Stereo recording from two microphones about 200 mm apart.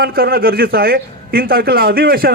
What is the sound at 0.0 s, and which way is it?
A man's voice, 50° right (ahead or behind).